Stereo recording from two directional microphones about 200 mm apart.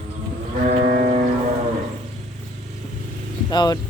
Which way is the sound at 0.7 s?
40° right (ahead or behind).